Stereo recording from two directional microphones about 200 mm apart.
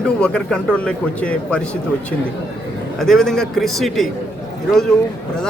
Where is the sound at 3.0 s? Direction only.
Centre (ahead or behind).